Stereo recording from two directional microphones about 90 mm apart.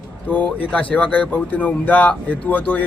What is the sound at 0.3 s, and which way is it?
A man's voice, 15° left (ahead or behind).